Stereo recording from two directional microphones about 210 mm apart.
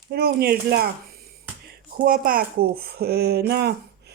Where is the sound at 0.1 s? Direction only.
50° right (ahead or behind).